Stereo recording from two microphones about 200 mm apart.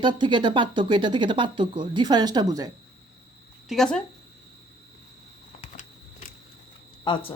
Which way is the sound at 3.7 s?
Centre (ahead or behind).